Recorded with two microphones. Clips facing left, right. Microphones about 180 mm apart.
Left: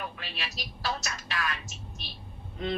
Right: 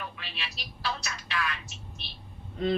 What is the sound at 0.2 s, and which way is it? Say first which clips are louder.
Telephone: left 2 dB; 45° left (ahead or behind).